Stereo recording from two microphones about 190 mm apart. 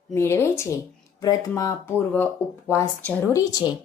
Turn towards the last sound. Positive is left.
turn(degrees=20)  # may be behind; listen again after turning